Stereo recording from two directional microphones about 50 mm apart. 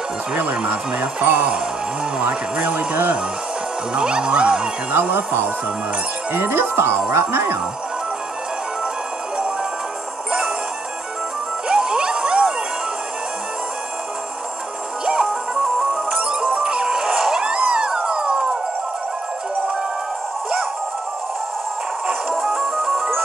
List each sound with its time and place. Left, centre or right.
0.9 s speech: right
3.9 s music: centre
5.0 s speech: right
11.7 s a sound: centre
15.0 s music: centre
22.3 s music: centre